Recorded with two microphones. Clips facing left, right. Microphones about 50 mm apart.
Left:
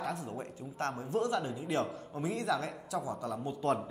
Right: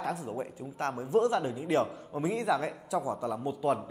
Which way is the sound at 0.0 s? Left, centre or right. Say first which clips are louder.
Right 4 dB; centre.